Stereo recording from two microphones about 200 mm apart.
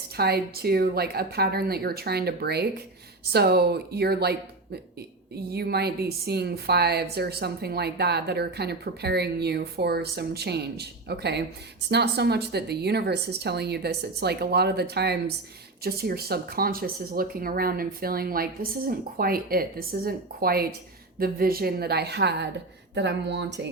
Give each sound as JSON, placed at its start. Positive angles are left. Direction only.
{"t": 0.2, "sound": "a woman's voice", "side_deg": -50}